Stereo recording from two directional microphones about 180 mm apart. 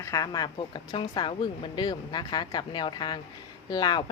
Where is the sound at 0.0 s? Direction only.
20° left (ahead or behind).